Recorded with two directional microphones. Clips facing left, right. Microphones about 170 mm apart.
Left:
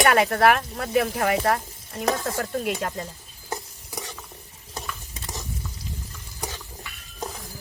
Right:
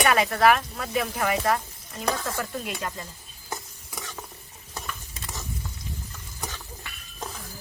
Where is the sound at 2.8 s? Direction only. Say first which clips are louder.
Left 4 dB; 50° left (ahead or behind).